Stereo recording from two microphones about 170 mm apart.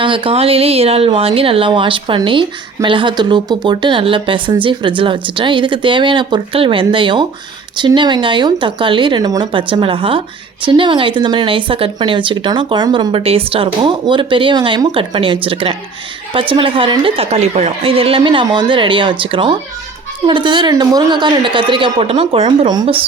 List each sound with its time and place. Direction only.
0.0 s speech: 30° right (ahead or behind)